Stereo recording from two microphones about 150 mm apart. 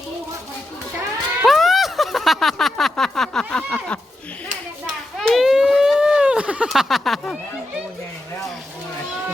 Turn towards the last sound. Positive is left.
turn(degrees=5)  # may be behind; listen again after turning